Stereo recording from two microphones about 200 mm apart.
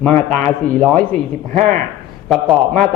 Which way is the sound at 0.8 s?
5° left (ahead or behind).